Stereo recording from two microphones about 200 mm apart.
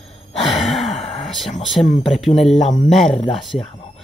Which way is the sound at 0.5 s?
Centre (ahead or behind).